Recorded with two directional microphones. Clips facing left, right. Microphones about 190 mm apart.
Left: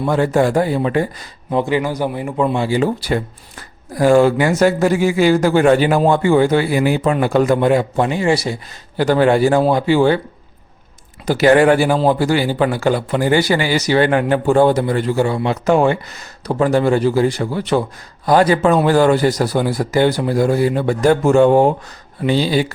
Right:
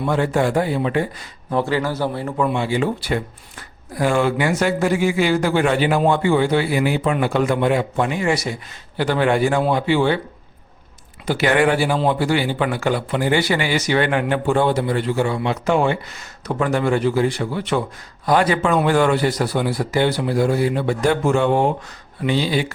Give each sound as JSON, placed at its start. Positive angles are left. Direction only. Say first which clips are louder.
{"t": 0.0, "sound": "a man's voice", "louder": "left 4 dB", "side_deg": 40}
{"t": 1.5, "sound": "a man's voice", "louder": "left 3 dB", "side_deg": 15}
{"t": 2.4, "sound": "a man's voice", "louder": "left 4 dB", "side_deg": 35}
{"t": 11.3, "sound": "a man's voice", "louder": "left 6 dB", "side_deg": 40}